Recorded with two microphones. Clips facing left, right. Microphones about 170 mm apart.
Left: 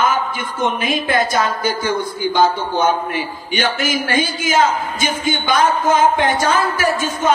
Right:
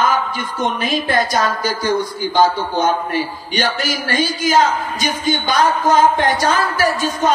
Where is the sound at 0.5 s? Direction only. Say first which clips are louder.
Even; 50° left (ahead or behind).